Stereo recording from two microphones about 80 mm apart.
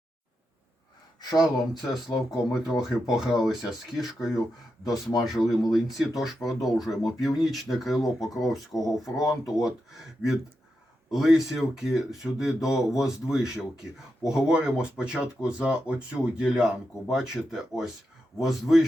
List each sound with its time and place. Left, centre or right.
1.4 s speech: centre
8.7 s speech: left
9.2 s speech: centre
11.1 s speech: centre